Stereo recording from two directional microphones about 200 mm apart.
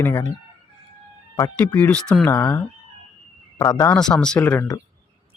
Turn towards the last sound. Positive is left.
turn(degrees=10)  # may be behind; listen again after turning